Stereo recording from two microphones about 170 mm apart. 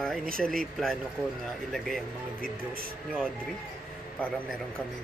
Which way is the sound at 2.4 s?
60° right (ahead or behind).